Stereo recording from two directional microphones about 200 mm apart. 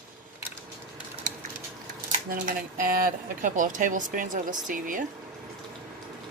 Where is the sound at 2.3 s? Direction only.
45° right (ahead or behind).